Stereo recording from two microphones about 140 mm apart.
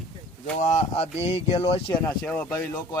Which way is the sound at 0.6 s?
55° left (ahead or behind).